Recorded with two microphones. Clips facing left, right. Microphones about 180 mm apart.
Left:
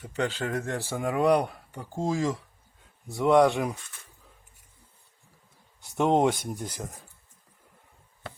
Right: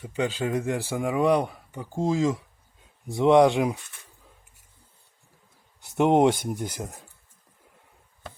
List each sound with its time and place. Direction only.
0.0 s speech: 10° right (ahead or behind)
3.1 s speech: 20° right (ahead or behind)
5.8 s speech: 15° right (ahead or behind)